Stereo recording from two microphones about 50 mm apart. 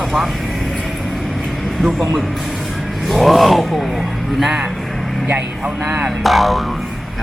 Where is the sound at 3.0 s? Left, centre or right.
Centre.